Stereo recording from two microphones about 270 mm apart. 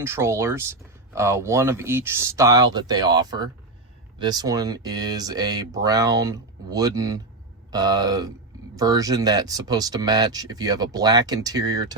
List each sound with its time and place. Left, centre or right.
0.0 s speech: centre